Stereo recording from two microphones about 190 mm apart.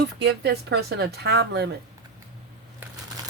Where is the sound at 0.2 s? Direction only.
60° right (ahead or behind).